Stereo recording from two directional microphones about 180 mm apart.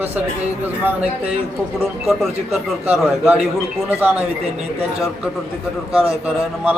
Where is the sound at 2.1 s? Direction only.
Centre (ahead or behind).